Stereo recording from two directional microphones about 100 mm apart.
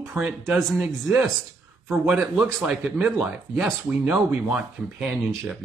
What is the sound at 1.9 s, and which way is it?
Speech, 5° right (ahead or behind).